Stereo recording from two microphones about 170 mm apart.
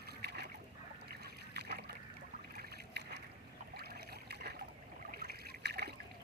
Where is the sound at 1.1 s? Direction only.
70° right (ahead or behind).